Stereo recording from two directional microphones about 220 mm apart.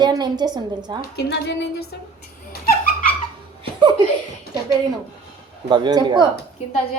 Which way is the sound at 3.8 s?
20° right (ahead or behind).